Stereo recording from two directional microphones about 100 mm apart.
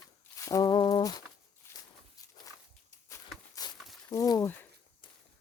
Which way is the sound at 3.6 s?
40° left (ahead or behind).